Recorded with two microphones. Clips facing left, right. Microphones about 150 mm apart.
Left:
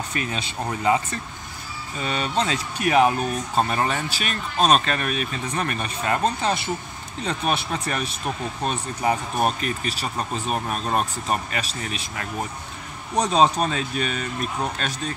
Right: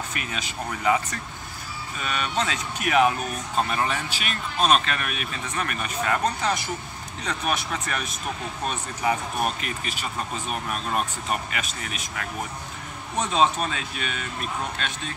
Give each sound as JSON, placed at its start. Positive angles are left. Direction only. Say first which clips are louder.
{"t": 0.1, "sound": "speech", "louder": "left 4 dB", "side_deg": 30}